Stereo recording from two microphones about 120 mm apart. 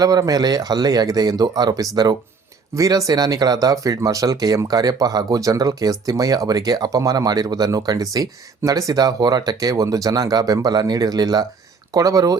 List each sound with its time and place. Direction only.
0.0 s speech: 30° right (ahead or behind)